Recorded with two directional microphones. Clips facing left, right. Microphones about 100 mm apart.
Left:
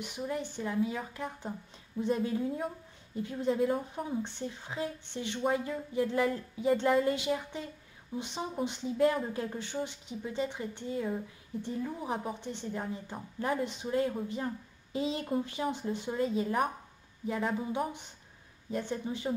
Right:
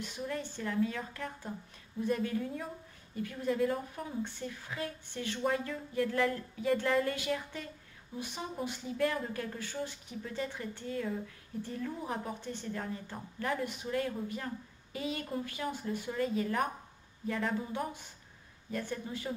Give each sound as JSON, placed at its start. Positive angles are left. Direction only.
{"t": 0.0, "sound": "a woman's voice", "side_deg": 15}